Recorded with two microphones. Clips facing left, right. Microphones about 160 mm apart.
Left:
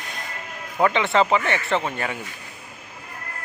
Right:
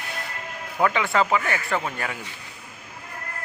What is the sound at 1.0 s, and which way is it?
Speech, 25° left (ahead or behind).